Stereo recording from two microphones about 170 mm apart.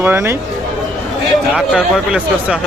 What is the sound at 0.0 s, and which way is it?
Speech, 15° right (ahead or behind).